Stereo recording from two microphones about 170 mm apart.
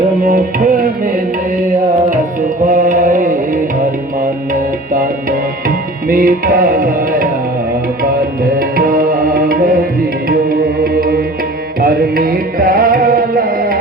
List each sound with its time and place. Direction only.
0.2 s music: 55° right (ahead or behind)
2.6 s music: 50° right (ahead or behind)
5.6 s tabla: 55° right (ahead or behind)
8.5 s tabla: 60° right (ahead or behind)
11.8 s music: 60° right (ahead or behind)